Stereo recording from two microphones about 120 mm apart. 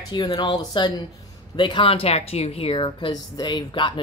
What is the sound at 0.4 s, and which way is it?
A woman's voice, 40° left (ahead or behind).